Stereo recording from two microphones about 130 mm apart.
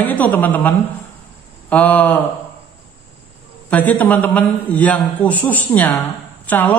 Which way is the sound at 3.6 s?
10° left (ahead or behind).